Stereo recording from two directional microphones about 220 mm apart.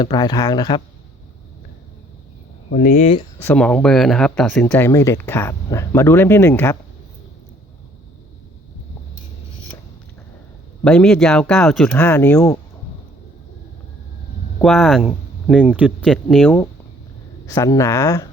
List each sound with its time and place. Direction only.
0.0 s speech: 20° left (ahead or behind)
2.7 s speech: 35° left (ahead or behind)
3.4 s speech: 5° left (ahead or behind)
10.8 s speech: 5° left (ahead or behind)
14.6 s speech: centre (ahead or behind)